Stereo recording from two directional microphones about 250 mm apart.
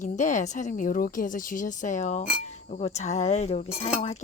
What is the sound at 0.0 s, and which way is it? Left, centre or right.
Speech, left.